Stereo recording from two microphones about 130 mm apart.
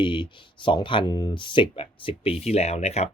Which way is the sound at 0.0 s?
40° left (ahead or behind).